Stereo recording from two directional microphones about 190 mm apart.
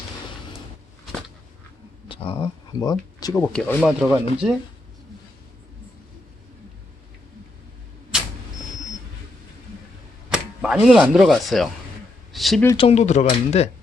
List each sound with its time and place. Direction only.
2.0 s speech: 30° left (ahead or behind)
3.5 s speech: 5° left (ahead or behind)
10.2 s speech: 5° right (ahead or behind)
12.7 s speech: 30° left (ahead or behind)